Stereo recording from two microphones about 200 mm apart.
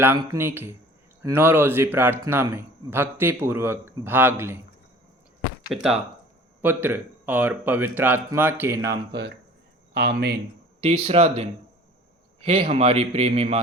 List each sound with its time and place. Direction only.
0.0 s speech: 15° right (ahead or behind)
5.6 s speech: centre (ahead or behind)
9.9 s speech: 55° right (ahead or behind)
10.8 s a man's voice: 30° right (ahead or behind)